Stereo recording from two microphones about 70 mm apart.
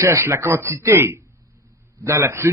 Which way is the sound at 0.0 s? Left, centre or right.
Right.